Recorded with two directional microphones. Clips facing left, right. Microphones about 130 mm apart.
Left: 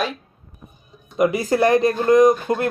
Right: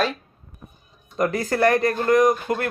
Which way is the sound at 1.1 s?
10° left (ahead or behind).